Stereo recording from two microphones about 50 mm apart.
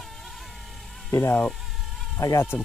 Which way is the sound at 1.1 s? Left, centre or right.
Left.